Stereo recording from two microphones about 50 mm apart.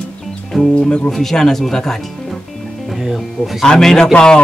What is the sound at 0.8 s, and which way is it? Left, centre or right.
Speech, left.